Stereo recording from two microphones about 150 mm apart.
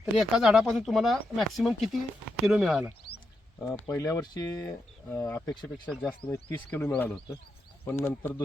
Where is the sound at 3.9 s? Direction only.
20° left (ahead or behind).